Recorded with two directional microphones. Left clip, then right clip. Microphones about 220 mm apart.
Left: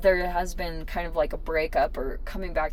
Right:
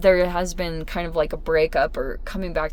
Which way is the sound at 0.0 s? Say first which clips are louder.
Right 5 dB; 45° right (ahead or behind).